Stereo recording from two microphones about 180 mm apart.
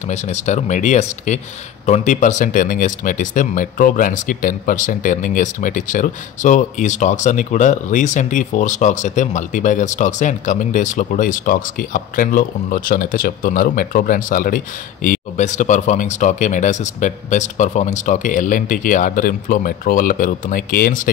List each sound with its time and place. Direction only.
0.1 s speech: 40° left (ahead or behind)